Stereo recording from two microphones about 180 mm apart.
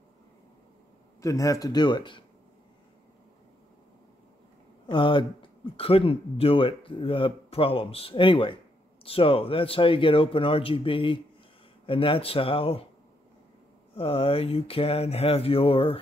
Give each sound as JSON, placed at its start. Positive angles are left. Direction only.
{"t": 1.2, "sound": "speech", "side_deg": 20}
{"t": 4.8, "sound": "speech", "side_deg": 25}
{"t": 13.9, "sound": "speech", "side_deg": 30}